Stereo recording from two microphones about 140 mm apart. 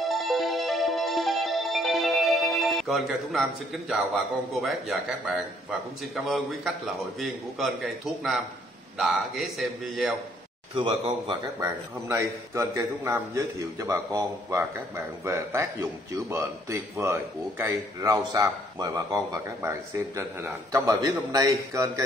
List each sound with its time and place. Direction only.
0.0 s music: centre (ahead or behind)
3.9 s a man's voice: centre (ahead or behind)
10.7 s speech: 45° right (ahead or behind)
11.6 s a man's voice: 20° right (ahead or behind)